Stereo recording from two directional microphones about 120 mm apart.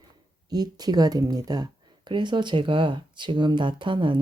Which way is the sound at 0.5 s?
35° right (ahead or behind).